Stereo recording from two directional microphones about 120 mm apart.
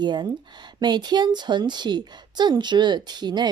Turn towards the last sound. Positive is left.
turn(degrees=-35)  # may be behind; listen again after turning